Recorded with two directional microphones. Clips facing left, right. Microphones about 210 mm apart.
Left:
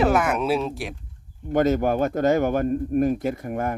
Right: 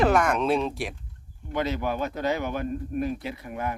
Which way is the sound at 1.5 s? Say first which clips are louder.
Left 8 dB; 45° left (ahead or behind).